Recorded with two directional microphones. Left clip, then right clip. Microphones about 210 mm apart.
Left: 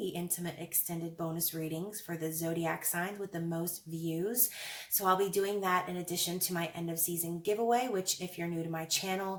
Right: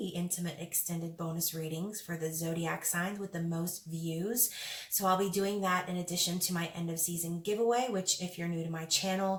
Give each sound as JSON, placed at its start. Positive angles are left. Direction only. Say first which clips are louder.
{"t": 2.0, "sound": "speech", "louder": "left 1 dB", "side_deg": 35}
{"t": 4.9, "sound": "speech", "louder": "left 1 dB", "side_deg": 35}